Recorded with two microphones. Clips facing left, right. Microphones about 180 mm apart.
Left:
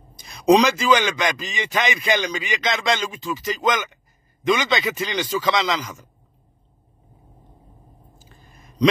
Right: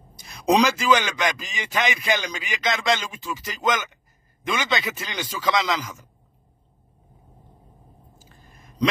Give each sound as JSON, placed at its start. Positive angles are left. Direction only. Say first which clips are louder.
{"t": 0.6, "sound": "a man's voice", "louder": "left 2 dB", "side_deg": -5}